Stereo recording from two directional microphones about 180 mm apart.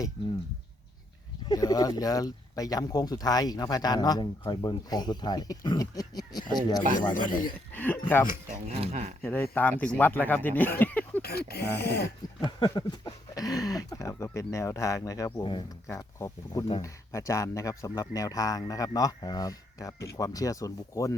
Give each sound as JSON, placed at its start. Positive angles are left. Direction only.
{"t": 1.5, "sound": "speech", "side_deg": 20}
{"t": 7.2, "sound": "speech", "side_deg": 50}
{"t": 7.7, "sound": "speech", "side_deg": 10}
{"t": 8.6, "sound": "speech", "side_deg": -35}
{"t": 9.2, "sound": "speech", "side_deg": 10}
{"t": 11.2, "sound": "speech", "side_deg": 60}
{"t": 12.4, "sound": "speech", "side_deg": 25}